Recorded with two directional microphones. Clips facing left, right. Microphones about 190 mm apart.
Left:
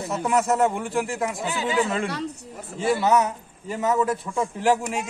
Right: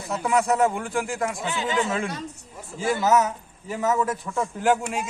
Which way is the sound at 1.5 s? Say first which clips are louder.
Left 3 dB; 10° left (ahead or behind).